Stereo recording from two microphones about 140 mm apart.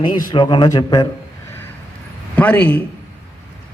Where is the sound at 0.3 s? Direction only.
35° left (ahead or behind).